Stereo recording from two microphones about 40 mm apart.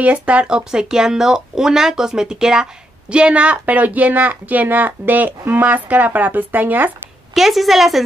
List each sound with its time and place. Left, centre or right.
0.0 s speech: right
7.3 s a woman's voice: centre